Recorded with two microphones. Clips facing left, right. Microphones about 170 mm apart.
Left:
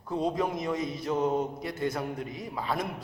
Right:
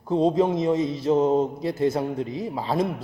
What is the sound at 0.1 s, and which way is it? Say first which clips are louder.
A man's voice: right 8 dB; 30° right (ahead or behind).